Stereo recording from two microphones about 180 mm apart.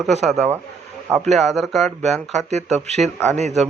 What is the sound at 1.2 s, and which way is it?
Speech, centre (ahead or behind).